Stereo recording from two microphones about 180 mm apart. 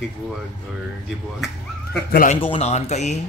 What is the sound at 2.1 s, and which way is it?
Speech, 50° left (ahead or behind).